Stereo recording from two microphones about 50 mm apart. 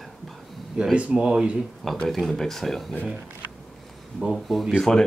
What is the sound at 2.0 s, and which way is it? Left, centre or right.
Speech, centre.